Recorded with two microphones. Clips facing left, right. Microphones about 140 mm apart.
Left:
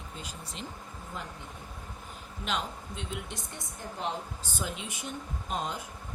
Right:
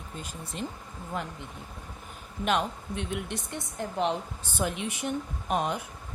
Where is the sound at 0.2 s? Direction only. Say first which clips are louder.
Right 5 dB; 50° right (ahead or behind).